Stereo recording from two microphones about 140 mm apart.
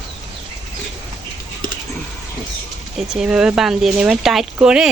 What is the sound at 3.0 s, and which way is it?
Speech, 5° right (ahead or behind).